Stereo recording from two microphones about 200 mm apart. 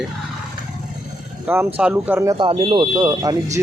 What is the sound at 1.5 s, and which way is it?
Speech, 10° right (ahead or behind).